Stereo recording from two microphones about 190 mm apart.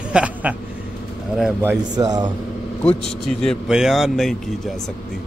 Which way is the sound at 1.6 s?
15° right (ahead or behind).